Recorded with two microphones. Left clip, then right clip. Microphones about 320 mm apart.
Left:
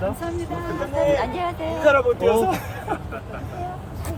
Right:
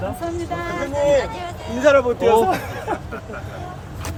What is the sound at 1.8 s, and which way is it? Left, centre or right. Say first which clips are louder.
Speech: right 3 dB; right.